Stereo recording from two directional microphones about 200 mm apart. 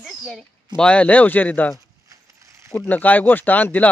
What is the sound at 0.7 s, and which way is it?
Speech, 5° left (ahead or behind).